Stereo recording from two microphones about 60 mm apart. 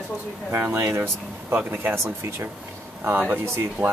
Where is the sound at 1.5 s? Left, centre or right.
Right.